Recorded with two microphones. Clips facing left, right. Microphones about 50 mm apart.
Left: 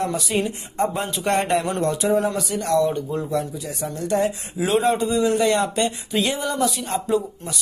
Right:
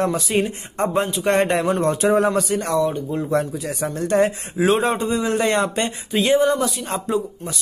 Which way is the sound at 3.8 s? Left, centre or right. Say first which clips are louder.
Right 3 dB; right.